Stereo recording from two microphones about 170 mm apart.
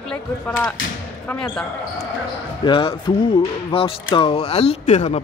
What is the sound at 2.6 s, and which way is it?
Speech, 30° left (ahead or behind).